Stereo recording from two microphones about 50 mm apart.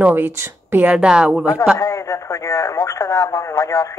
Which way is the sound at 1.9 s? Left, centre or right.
Left.